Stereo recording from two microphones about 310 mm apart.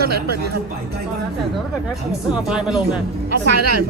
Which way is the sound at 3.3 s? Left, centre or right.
Right.